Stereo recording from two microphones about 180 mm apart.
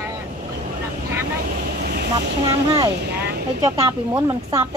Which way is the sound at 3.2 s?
65° right (ahead or behind).